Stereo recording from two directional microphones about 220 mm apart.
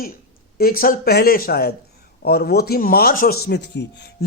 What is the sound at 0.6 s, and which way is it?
A man's voice, 40° left (ahead or behind).